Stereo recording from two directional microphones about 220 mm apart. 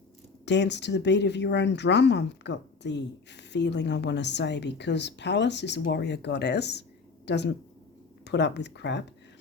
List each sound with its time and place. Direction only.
0.4 s a woman's voice: 50° left (ahead or behind)